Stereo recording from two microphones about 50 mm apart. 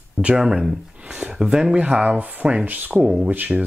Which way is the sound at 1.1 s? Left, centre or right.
Right.